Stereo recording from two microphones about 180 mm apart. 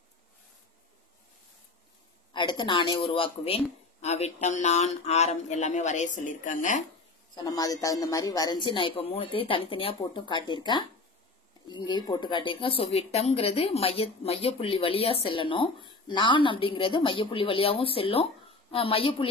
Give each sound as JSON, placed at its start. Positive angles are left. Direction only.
{"t": 2.3, "sound": "a woman's voice", "side_deg": 25}
{"t": 7.3, "sound": "a woman's voice", "side_deg": 20}